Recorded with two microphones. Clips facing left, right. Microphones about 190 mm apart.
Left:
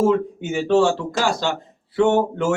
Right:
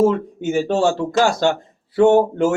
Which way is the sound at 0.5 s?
40° right (ahead or behind).